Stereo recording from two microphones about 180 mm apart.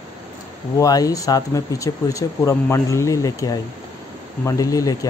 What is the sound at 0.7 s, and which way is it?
Speech, 20° left (ahead or behind).